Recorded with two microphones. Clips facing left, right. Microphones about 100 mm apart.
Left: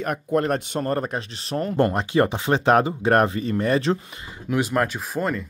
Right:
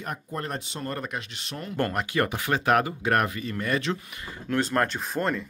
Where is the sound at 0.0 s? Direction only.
70° left (ahead or behind).